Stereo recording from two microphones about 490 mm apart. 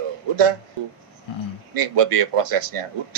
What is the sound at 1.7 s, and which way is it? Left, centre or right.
A man's voice, right.